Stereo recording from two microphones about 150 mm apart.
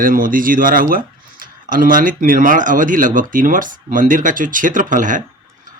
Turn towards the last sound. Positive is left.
turn(degrees=-60)  # may be behind; listen again after turning